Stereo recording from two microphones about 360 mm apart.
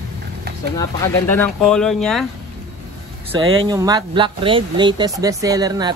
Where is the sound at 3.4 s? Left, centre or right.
Right.